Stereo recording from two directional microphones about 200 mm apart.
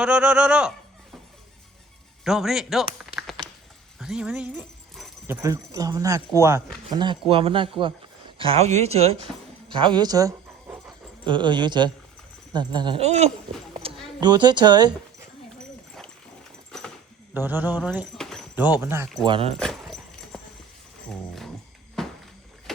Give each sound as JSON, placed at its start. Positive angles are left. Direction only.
{"t": 0.0, "sound": "speech", "side_deg": -5}
{"t": 2.2, "sound": "speech", "side_deg": 0}
{"t": 13.8, "sound": "a sound", "side_deg": -30}
{"t": 14.2, "sound": "speech", "side_deg": -20}
{"t": 17.3, "sound": "speech", "side_deg": -10}
{"t": 18.2, "sound": "speech", "side_deg": 0}
{"t": 19.3, "sound": "speech", "side_deg": -30}
{"t": 19.5, "sound": "dog", "side_deg": 0}
{"t": 21.1, "sound": "speech", "side_deg": 0}
{"t": 22.0, "sound": "walk", "side_deg": 0}